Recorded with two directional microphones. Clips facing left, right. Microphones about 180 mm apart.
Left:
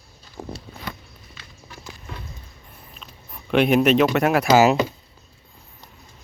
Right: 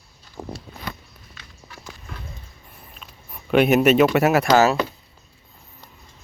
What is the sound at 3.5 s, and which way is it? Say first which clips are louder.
Speech: right 1 dB; 5° right (ahead or behind).